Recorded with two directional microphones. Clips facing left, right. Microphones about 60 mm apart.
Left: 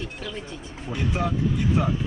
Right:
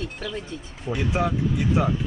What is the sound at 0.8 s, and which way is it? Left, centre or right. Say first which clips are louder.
Speech: right 2 dB; centre.